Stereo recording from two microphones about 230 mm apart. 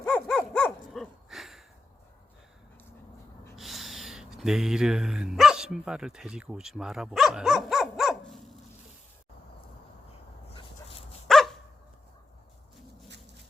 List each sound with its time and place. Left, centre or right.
0.0 s dog: centre
3.5 s speech: centre
10.5 s dog: left
11.3 s dog: centre